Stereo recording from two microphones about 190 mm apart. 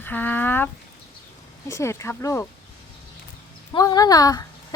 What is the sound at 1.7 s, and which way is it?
Speech, 15° left (ahead or behind).